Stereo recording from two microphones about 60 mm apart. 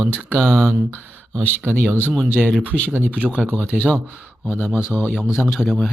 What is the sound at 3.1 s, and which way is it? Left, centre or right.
Speech, centre.